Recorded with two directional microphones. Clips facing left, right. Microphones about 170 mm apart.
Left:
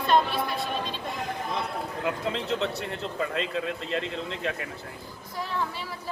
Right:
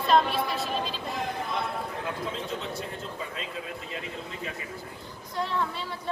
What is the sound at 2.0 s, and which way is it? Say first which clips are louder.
Speech: left 4 dB; 75° left (ahead or behind).